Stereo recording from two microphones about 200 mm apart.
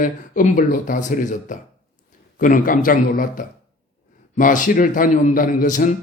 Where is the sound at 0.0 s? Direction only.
40° left (ahead or behind).